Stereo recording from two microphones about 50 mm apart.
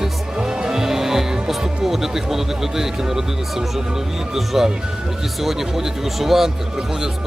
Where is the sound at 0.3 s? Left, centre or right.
Centre.